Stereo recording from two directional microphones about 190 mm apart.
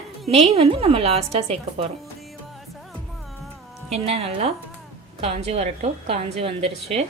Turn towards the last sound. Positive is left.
turn(degrees=-30)  # may be behind; listen again after turning